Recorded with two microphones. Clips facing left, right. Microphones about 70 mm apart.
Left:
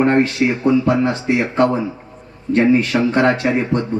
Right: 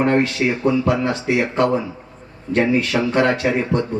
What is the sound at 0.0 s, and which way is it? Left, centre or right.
Speech, left.